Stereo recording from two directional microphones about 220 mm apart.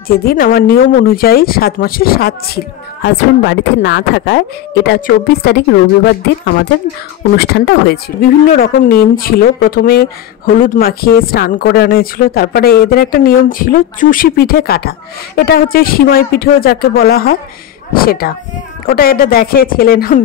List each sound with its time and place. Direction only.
0.1 s a woman's voice: 45° left (ahead or behind)